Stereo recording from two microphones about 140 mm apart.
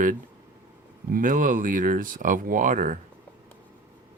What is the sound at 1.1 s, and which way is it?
Speech, 70° right (ahead or behind).